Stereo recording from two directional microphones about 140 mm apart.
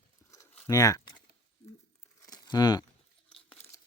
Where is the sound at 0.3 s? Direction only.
25° left (ahead or behind).